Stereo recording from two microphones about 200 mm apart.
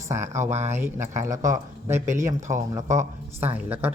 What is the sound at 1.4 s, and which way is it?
Speech, 40° right (ahead or behind).